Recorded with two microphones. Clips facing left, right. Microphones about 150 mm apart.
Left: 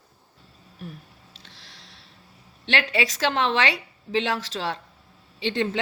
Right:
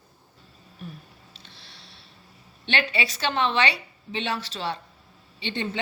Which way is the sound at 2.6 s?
90° left.